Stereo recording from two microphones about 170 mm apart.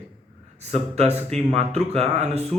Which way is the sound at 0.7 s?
40° right (ahead or behind).